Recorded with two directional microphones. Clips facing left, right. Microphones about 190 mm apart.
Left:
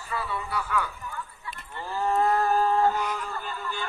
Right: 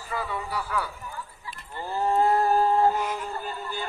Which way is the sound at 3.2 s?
35° right (ahead or behind).